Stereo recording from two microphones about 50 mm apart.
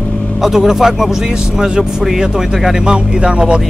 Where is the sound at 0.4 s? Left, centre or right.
Centre.